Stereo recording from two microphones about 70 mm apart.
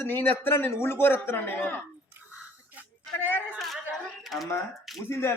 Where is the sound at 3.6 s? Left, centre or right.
Centre.